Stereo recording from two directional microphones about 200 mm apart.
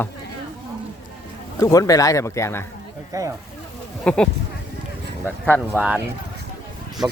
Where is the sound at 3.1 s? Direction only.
15° right (ahead or behind).